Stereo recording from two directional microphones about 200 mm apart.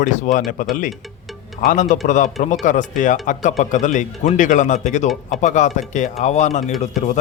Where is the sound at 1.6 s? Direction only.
40° left (ahead or behind).